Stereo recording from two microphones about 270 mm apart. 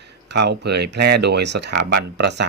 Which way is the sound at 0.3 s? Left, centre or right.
Right.